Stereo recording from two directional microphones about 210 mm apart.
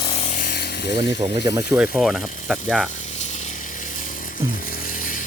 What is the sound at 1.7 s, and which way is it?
Speech, 5° right (ahead or behind).